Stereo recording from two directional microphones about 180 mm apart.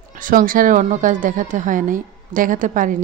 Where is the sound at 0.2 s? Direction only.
50° right (ahead or behind).